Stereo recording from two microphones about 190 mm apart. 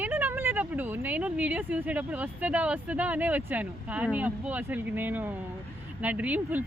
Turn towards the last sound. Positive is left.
turn(degrees=-10)  # may be behind; listen again after turning